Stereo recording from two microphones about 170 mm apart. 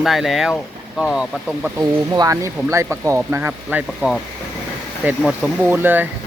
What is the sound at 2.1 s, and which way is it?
Speech, 20° right (ahead or behind).